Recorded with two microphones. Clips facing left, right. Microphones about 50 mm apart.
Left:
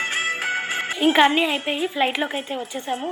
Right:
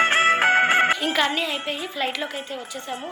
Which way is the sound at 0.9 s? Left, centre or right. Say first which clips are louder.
Left 6 dB; left.